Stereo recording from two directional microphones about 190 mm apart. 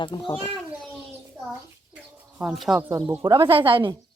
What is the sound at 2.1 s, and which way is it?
Speech, centre (ahead or behind).